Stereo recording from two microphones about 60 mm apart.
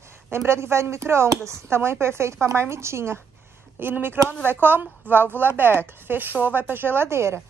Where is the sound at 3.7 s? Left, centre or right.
Right.